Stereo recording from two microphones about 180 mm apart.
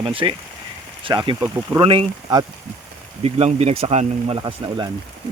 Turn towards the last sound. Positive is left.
turn(degrees=-25)  # may be behind; listen again after turning